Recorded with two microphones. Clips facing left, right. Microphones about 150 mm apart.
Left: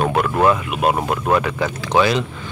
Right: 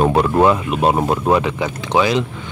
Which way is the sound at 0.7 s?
30° right (ahead or behind).